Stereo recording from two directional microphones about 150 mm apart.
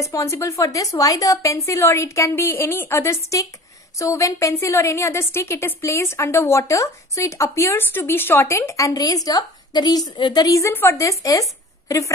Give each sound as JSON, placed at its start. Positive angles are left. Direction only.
{"t": 0.0, "sound": "a woman's voice", "side_deg": 20}